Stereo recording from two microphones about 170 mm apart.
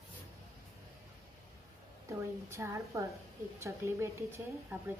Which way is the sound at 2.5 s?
15° right (ahead or behind).